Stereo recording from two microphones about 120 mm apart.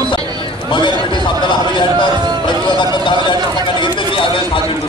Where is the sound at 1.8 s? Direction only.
40° left (ahead or behind).